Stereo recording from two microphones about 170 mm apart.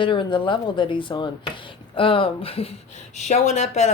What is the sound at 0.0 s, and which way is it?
Speech, 30° left (ahead or behind).